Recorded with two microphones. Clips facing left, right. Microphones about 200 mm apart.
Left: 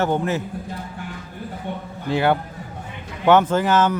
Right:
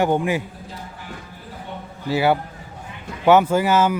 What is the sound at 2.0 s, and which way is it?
A man's voice, 5° right (ahead or behind).